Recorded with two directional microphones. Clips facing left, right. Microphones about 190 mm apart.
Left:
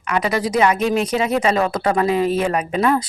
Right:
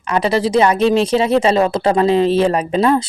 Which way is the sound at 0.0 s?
30° right (ahead or behind).